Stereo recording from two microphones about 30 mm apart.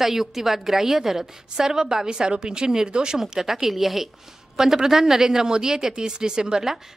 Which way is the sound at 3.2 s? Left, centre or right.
Centre.